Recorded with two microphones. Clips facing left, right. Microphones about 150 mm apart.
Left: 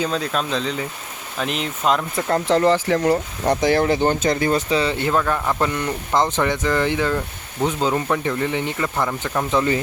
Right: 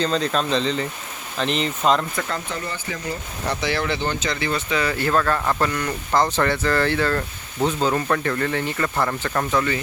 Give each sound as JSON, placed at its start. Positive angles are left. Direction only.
{"t": 0.0, "sound": "speech", "side_deg": 5}
{"t": 2.5, "sound": "speech", "side_deg": 85}
{"t": 3.4, "sound": "speech", "side_deg": 45}
{"t": 4.8, "sound": "speech", "side_deg": 25}